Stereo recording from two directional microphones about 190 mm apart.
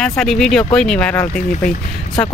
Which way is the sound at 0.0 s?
5° left (ahead or behind).